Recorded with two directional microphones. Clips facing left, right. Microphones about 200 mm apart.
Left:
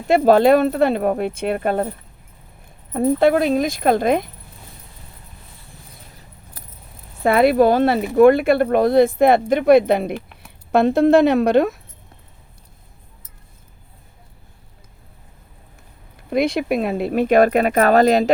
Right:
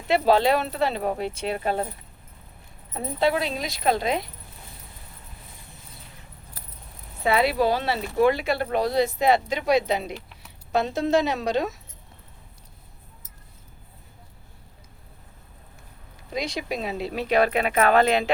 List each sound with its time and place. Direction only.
0.1 s speech: 50° left (ahead or behind)
3.0 s speech: 50° left (ahead or behind)
7.2 s speech: 50° left (ahead or behind)
16.3 s speech: 55° left (ahead or behind); by 18.3 s 40° left (ahead or behind)